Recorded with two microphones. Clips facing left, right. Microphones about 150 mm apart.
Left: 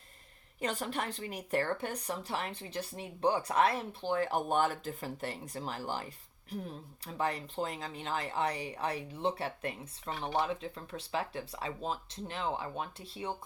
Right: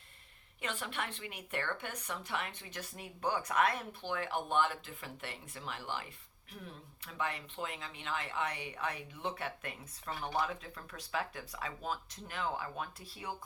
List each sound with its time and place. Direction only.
0.6 s a woman's voice: 40° left (ahead or behind)